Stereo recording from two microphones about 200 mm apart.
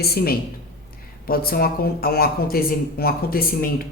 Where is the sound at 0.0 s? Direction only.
50° left (ahead or behind).